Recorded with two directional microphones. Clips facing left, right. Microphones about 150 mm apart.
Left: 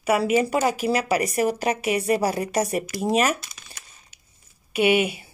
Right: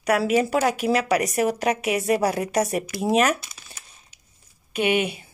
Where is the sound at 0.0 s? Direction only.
Centre (ahead or behind).